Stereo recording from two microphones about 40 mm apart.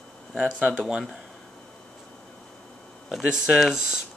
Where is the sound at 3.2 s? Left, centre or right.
Centre.